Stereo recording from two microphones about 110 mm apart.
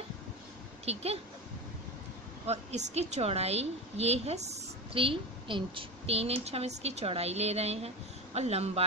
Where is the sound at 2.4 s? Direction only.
85° right.